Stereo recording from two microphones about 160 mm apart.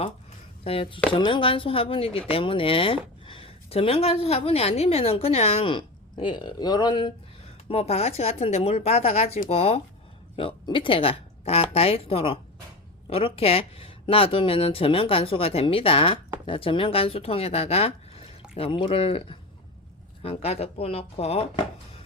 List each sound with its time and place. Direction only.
0.6 s speech: 35° left (ahead or behind)
7.7 s speech: 40° left (ahead or behind)